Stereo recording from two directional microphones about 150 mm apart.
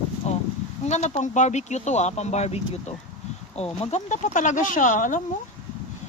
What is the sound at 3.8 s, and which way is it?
Speech, 50° left (ahead or behind).